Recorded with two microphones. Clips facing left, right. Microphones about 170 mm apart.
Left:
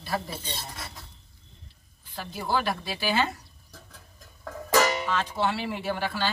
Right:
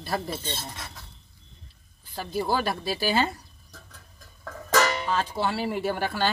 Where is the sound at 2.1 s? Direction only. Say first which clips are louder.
Right 2 dB; 40° right (ahead or behind).